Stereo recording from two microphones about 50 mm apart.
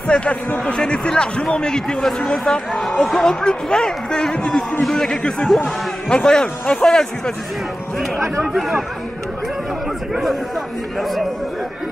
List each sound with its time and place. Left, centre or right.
0.1 s a man's voice: left
8.4 s speech: centre
11.0 s speech: centre